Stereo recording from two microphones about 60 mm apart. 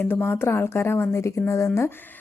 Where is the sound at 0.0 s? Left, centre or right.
Left.